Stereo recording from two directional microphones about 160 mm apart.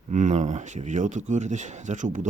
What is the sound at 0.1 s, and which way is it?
Speech, 50° right (ahead or behind).